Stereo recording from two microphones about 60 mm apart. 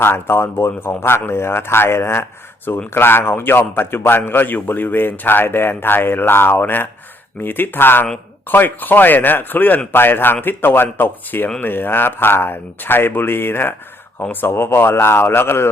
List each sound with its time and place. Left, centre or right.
0.0 s a man's voice: left